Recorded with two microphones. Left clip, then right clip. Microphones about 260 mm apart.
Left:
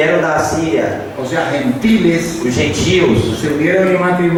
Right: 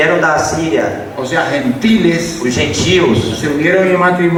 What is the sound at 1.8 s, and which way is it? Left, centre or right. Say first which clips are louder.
Speech: right 1 dB; centre.